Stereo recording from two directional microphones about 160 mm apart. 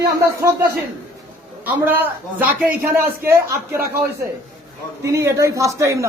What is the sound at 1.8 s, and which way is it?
A man's voice, 10° right (ahead or behind).